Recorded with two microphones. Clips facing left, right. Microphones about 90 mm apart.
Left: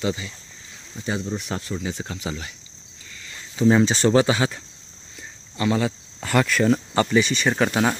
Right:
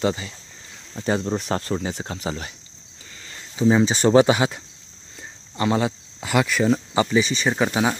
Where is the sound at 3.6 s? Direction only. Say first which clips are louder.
Even; 10° right (ahead or behind).